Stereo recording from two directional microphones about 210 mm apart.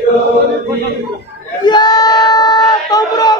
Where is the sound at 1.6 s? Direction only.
20° left (ahead or behind).